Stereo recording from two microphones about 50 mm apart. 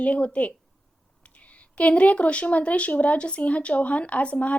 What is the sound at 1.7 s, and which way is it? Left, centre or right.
A woman's voice, left.